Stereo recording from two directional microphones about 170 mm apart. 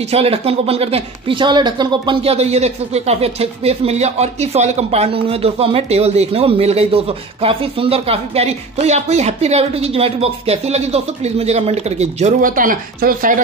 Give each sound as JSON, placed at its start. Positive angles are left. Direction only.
{"t": 0.1, "sound": "speech", "side_deg": -35}